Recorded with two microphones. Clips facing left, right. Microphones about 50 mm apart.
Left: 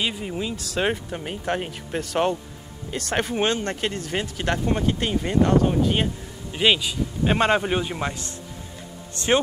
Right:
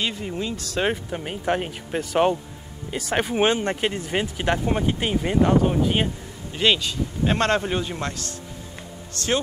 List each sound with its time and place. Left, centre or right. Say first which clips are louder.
0.0 s speech: even; centre
6.5 s a man's voice: left 1 dB; centre